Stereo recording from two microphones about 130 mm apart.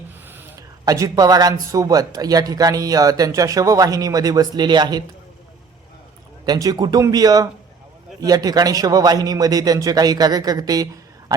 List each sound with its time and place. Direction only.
0.9 s speech: 25° right (ahead or behind)
6.4 s speech: 30° right (ahead or behind)